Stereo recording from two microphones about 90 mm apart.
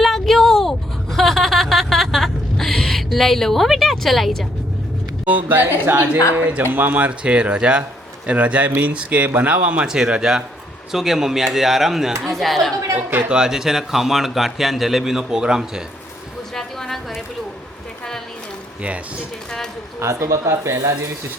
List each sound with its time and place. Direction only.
0.0 s a sound: centre (ahead or behind)
5.5 s a woman's voice: 20° right (ahead or behind); by 12.7 s centre (ahead or behind)
12.9 s a woman's voice: 20° right (ahead or behind)
13.3 s speech: 5° right (ahead or behind)
16.6 s a sound: 5° left (ahead or behind)
20.0 s speech: 30° right (ahead or behind)